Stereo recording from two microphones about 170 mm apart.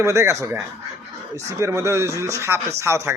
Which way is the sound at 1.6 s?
15° right (ahead or behind).